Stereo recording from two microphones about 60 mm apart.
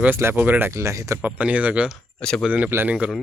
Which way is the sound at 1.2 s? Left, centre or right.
Right.